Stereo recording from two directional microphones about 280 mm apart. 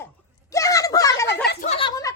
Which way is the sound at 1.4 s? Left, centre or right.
Left.